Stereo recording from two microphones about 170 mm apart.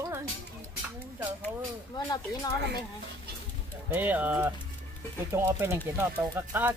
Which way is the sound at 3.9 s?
10° right (ahead or behind).